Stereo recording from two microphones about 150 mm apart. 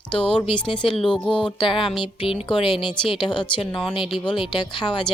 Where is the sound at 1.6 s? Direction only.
35° left (ahead or behind).